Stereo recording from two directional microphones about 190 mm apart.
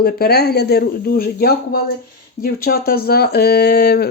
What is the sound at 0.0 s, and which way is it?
Speech, 55° left (ahead or behind).